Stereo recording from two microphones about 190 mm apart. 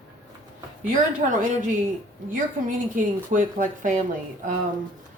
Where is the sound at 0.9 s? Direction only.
40° right (ahead or behind).